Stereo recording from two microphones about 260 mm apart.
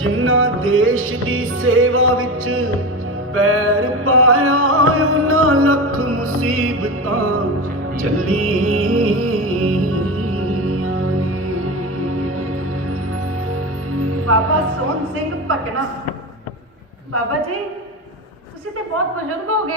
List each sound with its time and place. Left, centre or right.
0.0 s music: right
13.9 s music: right
19.5 s music: right